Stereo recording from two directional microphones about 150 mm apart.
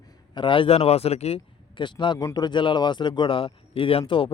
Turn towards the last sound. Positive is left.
turn(degrees=35)  # may be behind; listen again after turning